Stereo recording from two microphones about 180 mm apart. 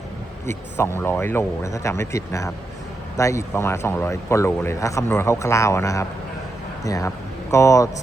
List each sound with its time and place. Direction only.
0.9 s speech: 10° left (ahead or behind)